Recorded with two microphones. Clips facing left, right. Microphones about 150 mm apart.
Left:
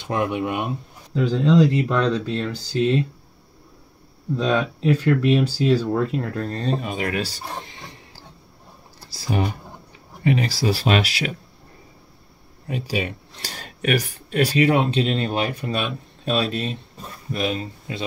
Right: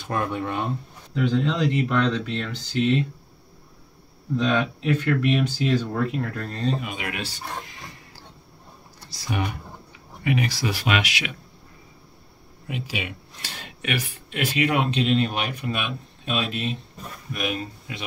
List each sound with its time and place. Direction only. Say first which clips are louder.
0.0 s speech: left 3 dB; 20° left (ahead or behind)
1.1 s speech: left 5 dB; 30° left (ahead or behind)
4.4 s speech: left 1 dB; 35° left (ahead or behind)
9.1 s speech: left 4 dB; 30° left (ahead or behind)
12.6 s speech: left 5 dB; 40° left (ahead or behind)